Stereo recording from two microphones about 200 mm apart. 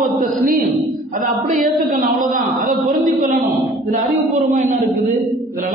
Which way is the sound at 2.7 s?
Centre (ahead or behind).